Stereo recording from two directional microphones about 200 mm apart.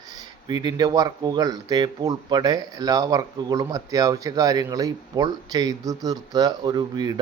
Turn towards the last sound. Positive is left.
turn(degrees=-20)  # may be behind; listen again after turning